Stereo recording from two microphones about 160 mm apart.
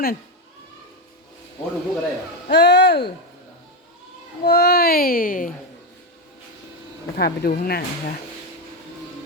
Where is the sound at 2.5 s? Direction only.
90° left.